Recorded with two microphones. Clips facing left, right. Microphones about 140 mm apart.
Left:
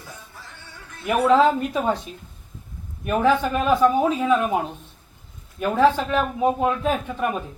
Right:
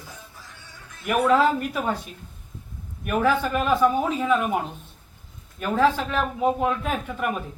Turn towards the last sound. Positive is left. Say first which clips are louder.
# left 3 dB
turn(degrees=20)  # may be behind; listen again after turning